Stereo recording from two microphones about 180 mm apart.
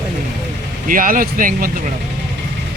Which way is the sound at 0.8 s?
50° right (ahead or behind).